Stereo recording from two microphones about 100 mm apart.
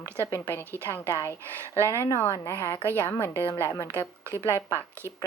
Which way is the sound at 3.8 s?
25° left (ahead or behind).